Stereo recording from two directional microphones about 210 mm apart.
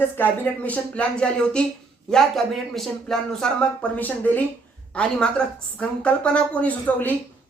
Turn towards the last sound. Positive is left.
turn(degrees=5)  # may be behind; listen again after turning